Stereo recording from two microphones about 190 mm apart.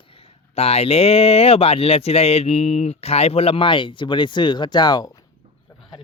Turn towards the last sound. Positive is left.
turn(degrees=20)  # may be behind; listen again after turning